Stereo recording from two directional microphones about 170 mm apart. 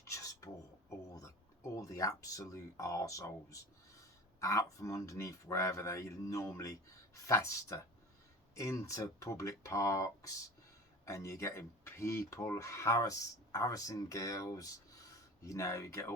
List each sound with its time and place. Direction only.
0.0 s filing: 20° left (ahead or behind)
1.7 s speech: 20° left (ahead or behind)